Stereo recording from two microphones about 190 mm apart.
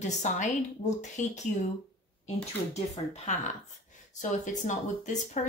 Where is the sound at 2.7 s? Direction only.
35° left (ahead or behind).